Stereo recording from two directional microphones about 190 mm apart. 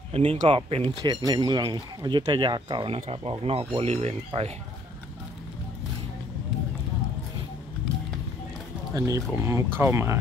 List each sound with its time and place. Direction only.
0.1 s speech: 30° right (ahead or behind)
8.9 s speech: 15° right (ahead or behind)